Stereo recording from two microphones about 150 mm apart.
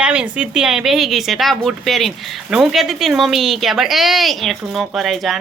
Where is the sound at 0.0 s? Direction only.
5° right (ahead or behind).